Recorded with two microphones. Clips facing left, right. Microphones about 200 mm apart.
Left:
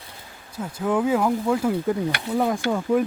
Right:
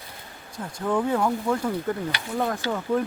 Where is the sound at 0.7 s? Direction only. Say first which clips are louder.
Left 3 dB; 5° left (ahead or behind).